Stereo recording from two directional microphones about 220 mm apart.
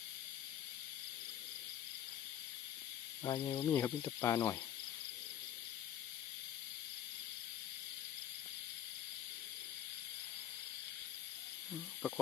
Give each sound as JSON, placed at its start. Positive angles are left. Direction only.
{"t": 3.2, "sound": "speech", "side_deg": 20}
{"t": 3.6, "sound": "speech", "side_deg": 10}
{"t": 11.7, "sound": "snake", "side_deg": 0}